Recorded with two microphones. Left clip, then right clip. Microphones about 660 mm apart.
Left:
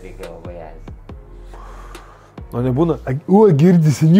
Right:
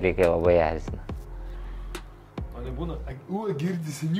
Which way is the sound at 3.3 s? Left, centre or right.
Left.